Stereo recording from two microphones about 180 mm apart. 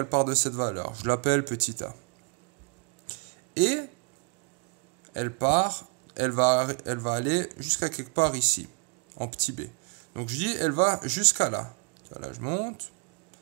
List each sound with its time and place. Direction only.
0.1 s speech: 50° right (ahead or behind)
3.5 s speech: 45° right (ahead or behind)
5.1 s speech: 45° right (ahead or behind)